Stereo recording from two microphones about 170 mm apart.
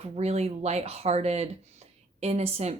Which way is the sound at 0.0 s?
40° right (ahead or behind).